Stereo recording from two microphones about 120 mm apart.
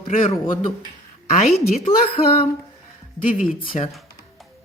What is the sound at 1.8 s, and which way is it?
Speech, 50° left (ahead or behind).